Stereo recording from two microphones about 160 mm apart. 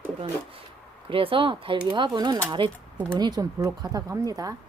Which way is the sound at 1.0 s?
35° right (ahead or behind).